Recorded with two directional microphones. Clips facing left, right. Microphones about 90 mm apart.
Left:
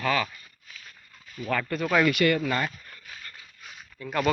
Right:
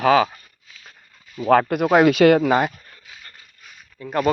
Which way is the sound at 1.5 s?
65° right (ahead or behind).